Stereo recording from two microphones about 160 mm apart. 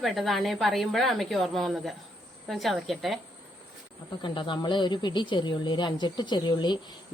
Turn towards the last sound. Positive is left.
turn(degrees=25)  # may be behind; listen again after turning